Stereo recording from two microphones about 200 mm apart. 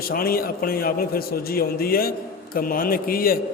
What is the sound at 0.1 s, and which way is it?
A man's voice, 45° left (ahead or behind).